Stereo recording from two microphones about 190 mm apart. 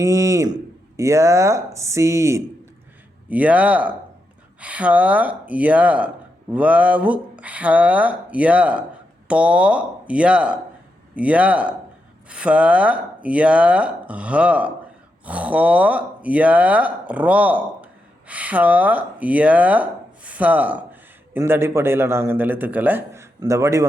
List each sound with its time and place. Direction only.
0.0 s speech: 15° right (ahead or behind)